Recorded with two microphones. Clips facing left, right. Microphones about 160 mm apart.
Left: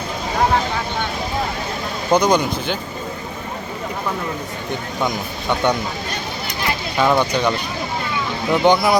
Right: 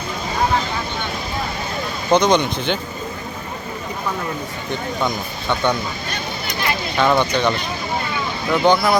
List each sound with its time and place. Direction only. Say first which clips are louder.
2.0 s speech: even; 10° left (ahead or behind)
6.9 s speech: even; 5° left (ahead or behind)
8.4 s speech: left 1 dB; 15° left (ahead or behind)